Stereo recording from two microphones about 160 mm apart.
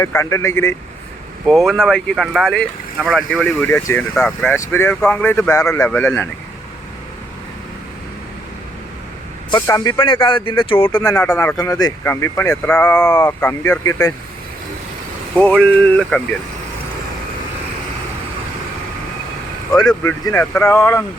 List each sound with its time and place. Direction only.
0.0 s speech: 20° left (ahead or behind)
1.5 s speech: centre (ahead or behind)
3.4 s speech: 10° left (ahead or behind)
9.5 s speech: 25° left (ahead or behind)
10.0 s speech: 30° left (ahead or behind)
15.4 s speech: 10° left (ahead or behind)
20.1 s speech: 15° left (ahead or behind)